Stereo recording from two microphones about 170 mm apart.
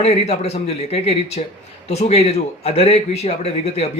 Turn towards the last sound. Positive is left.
turn(degrees=35)  # may be behind; listen again after turning